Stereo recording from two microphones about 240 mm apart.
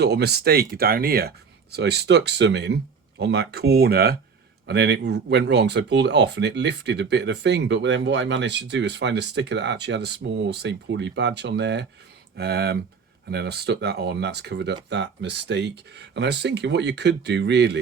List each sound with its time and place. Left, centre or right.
0.0 s speech: right